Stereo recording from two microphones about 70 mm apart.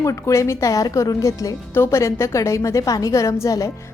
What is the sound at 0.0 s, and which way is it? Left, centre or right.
Speech, left.